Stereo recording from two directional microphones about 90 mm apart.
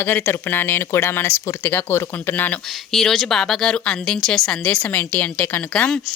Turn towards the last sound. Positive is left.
turn(degrees=10)  # may be behind; listen again after turning